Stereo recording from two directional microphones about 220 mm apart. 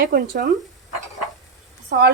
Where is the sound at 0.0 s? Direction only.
40° right (ahead or behind).